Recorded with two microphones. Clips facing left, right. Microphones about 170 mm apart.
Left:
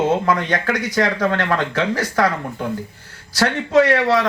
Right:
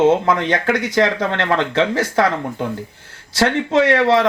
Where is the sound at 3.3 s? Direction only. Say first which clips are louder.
Even; 25° right (ahead or behind).